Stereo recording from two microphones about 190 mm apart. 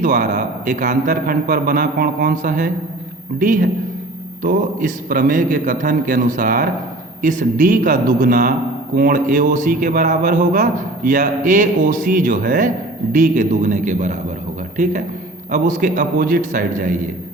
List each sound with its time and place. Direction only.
0.0 s a man's voice: 40° right (ahead or behind)